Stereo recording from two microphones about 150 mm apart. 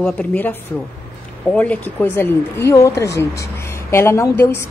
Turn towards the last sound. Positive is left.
turn(degrees=15)  # may be behind; listen again after turning